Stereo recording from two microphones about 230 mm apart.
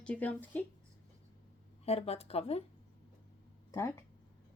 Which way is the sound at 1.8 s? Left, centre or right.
Left.